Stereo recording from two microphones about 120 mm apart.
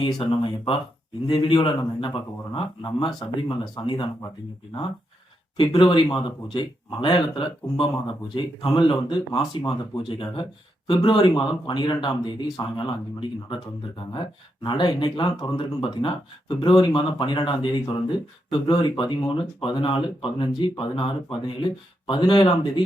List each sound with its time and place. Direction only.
0.0 s speech: 45° left (ahead or behind)
5.5 s speech: 40° left (ahead or behind)